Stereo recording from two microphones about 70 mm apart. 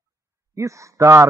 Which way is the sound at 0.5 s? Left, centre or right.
Right.